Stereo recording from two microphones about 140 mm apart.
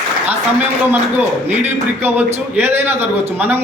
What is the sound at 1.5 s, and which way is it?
A man's voice, 15° right (ahead or behind).